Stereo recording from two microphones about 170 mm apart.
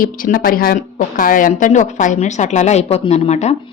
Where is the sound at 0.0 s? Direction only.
55° left (ahead or behind).